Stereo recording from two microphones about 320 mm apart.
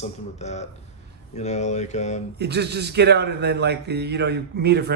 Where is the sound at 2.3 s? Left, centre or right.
Right.